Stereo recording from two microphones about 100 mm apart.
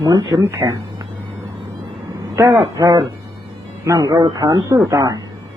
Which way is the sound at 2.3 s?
30° right (ahead or behind).